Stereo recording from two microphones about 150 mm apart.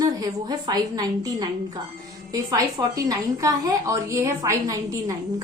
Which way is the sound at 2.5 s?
25° right (ahead or behind).